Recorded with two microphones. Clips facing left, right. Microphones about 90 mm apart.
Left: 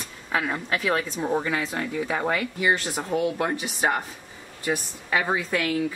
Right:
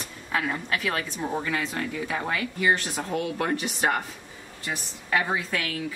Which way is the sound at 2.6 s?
15° left (ahead or behind).